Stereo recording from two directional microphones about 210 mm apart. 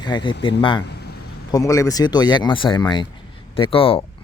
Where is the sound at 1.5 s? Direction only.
15° left (ahead or behind).